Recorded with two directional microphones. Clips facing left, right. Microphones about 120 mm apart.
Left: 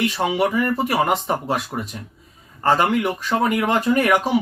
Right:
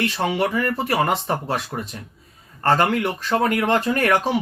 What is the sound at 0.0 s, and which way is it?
Speech, 10° left (ahead or behind).